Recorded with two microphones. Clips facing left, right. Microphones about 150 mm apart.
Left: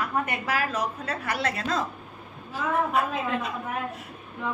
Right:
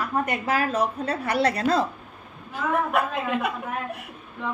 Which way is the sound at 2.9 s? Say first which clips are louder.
Right 1 dB; 60° right (ahead or behind).